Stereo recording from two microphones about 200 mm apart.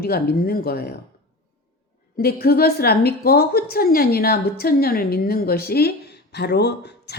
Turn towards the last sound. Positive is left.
turn(degrees=55)  # may be behind; listen again after turning